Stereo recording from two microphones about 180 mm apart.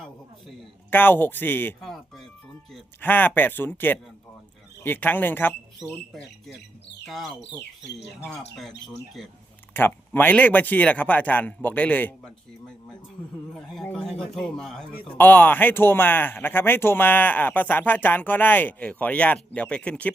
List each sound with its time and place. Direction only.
0.9 s a man's voice: 10° left (ahead or behind)
7.0 s speech: centre (ahead or behind)
9.7 s a man's voice: 10° left (ahead or behind)